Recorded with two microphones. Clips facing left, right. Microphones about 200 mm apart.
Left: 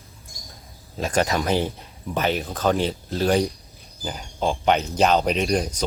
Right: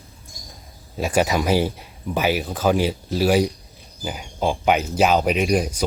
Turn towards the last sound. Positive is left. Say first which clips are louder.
# right 2 dB
turn(degrees=-10)  # may be behind; listen again after turning